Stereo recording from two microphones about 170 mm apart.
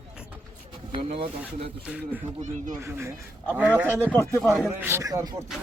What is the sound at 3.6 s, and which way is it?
Speech, 5° right (ahead or behind).